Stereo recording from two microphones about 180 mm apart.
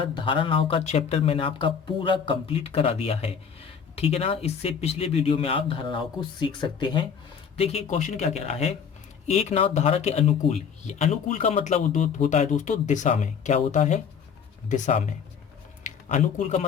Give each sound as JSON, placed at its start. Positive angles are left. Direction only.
{"t": 0.0, "sound": "a man's voice", "side_deg": 25}